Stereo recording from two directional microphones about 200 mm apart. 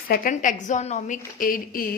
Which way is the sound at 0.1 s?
40° left (ahead or behind).